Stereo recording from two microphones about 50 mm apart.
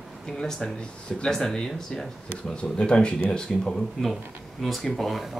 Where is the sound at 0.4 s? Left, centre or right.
Centre.